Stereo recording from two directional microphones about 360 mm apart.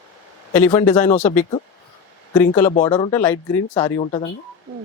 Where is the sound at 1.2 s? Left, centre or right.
Centre.